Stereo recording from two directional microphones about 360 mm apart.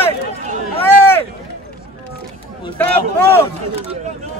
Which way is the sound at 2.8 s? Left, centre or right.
Centre.